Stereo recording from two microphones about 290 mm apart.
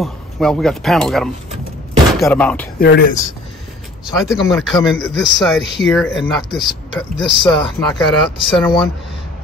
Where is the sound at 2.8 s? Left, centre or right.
Left.